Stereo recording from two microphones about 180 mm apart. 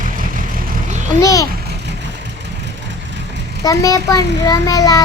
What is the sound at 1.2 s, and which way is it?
Speech, 20° left (ahead or behind).